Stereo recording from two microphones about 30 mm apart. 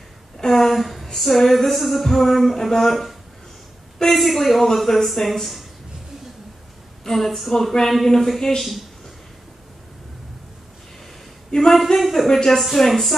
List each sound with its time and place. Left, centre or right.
0.5 s music: centre
4.1 s speech: centre
7.1 s speech: centre
11.7 s speech: centre
12.3 s speech: centre
12.5 s speech: centre